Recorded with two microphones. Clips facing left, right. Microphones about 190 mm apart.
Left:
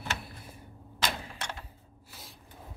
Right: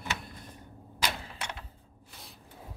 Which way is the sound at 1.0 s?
10° right (ahead or behind).